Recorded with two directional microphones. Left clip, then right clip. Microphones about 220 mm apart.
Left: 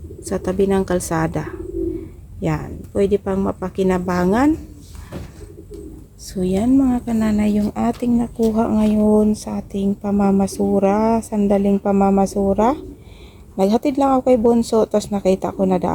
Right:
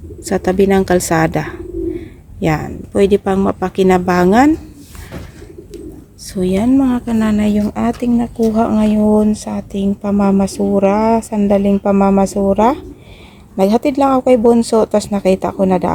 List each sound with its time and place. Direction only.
0.3 s a woman's voice: 15° right (ahead or behind)
6.2 s speech: 10° right (ahead or behind)